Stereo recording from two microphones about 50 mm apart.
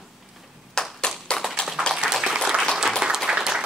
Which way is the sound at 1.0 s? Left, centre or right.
Centre.